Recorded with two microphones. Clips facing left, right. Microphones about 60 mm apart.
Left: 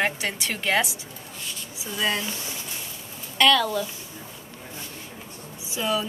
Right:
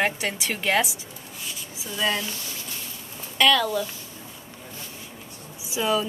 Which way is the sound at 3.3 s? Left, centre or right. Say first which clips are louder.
Even; centre.